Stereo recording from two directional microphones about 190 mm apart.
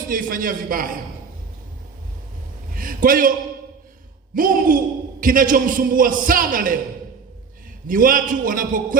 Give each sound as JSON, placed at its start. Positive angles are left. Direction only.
{"t": 0.1, "sound": "a man's voice", "side_deg": -45}
{"t": 2.7, "sound": "a sound", "side_deg": -50}
{"t": 4.4, "sound": "a man's voice", "side_deg": -45}
{"t": 7.9, "sound": "a man's voice", "side_deg": -45}